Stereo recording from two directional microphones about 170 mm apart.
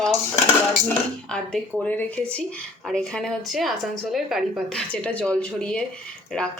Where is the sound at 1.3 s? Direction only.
5° left (ahead or behind).